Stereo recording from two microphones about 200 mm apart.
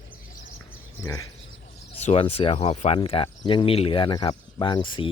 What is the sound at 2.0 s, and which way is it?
Speech, 30° left (ahead or behind).